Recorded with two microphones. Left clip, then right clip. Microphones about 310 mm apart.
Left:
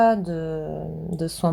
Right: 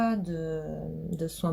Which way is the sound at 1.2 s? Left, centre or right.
Left.